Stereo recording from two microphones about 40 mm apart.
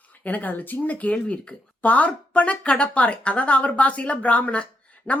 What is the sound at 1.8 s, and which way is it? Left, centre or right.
Speech, left.